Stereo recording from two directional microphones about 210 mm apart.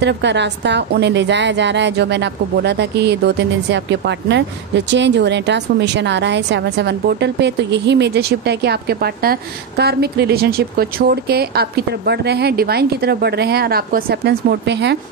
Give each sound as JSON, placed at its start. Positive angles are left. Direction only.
{"t": 0.0, "sound": "a woman's voice", "side_deg": -55}